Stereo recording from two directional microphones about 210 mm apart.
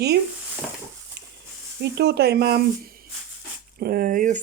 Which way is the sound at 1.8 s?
50° right (ahead or behind).